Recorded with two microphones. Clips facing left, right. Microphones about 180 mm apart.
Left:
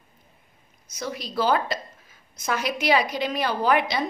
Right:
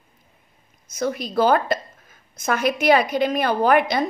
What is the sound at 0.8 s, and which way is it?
A woman's voice, 50° right (ahead or behind).